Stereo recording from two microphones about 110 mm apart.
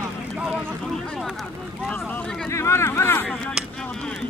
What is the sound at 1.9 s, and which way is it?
Speech, 10° left (ahead or behind).